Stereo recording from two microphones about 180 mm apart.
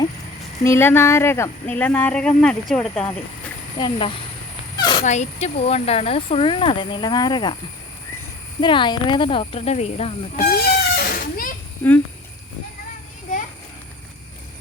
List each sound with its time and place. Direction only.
0.6 s speech: 15° left (ahead or behind)
3.8 s speech: 30° left (ahead or behind)
5.0 s speech: 40° left (ahead or behind); by 7.5 s 25° left (ahead or behind)
8.6 s speech: 25° left (ahead or behind)
10.5 s a sound: 60° left (ahead or behind)
11.8 s speech: 10° left (ahead or behind)